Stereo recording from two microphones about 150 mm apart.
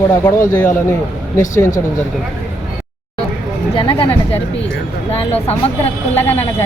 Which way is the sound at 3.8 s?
35° left (ahead or behind).